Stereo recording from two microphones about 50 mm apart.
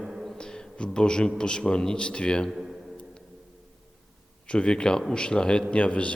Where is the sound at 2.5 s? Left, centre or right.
Centre.